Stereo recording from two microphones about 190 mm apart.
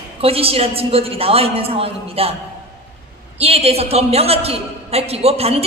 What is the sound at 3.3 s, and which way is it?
A man's voice, 30° right (ahead or behind).